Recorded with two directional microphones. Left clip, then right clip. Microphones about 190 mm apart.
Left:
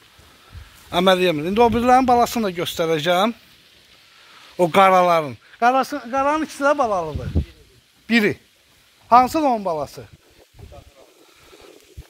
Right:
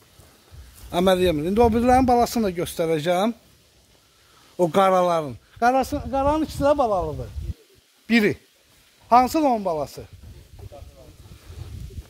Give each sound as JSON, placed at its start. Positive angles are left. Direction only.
{"t": 0.8, "sound": "speech", "side_deg": -5}
{"t": 4.6, "sound": "speech", "side_deg": 0}
{"t": 5.6, "sound": "speech", "side_deg": -5}
{"t": 7.0, "sound": "speech", "side_deg": 20}
{"t": 8.1, "sound": "speech", "side_deg": 0}